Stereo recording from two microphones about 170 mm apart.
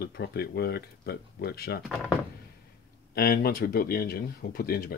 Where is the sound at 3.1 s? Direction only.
65° left (ahead or behind).